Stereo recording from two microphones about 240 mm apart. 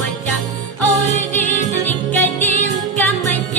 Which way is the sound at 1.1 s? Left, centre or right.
Left.